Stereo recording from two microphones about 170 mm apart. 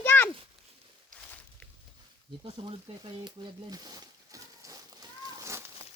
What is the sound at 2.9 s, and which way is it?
Speech, 35° right (ahead or behind).